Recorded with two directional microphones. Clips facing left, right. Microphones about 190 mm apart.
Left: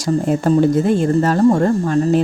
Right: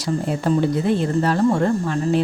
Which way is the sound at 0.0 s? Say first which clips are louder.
Left 5 dB; 45° left (ahead or behind).